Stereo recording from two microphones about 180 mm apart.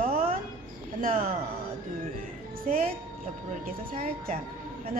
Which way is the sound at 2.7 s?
40° right (ahead or behind).